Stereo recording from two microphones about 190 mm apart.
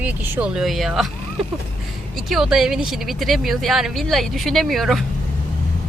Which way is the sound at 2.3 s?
Centre (ahead or behind).